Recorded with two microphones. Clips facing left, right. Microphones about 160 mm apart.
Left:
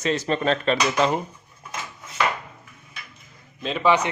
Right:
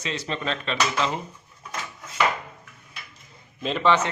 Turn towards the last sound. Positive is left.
turn(degrees=10)  # may be behind; listen again after turning